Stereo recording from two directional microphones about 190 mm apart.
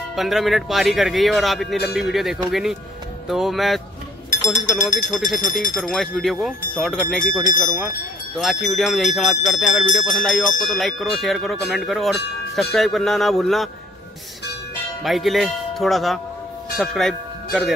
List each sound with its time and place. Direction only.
0.1 s speech: centre (ahead or behind)
4.7 s speech: 40° left (ahead or behind)
5.8 s speech: centre (ahead or behind)
15.0 s speech: centre (ahead or behind)
16.7 s tubular bells: centre (ahead or behind)